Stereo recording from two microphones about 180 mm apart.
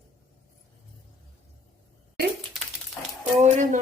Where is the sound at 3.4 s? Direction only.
40° right (ahead or behind).